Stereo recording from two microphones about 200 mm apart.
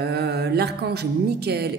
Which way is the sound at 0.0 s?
55° right (ahead or behind).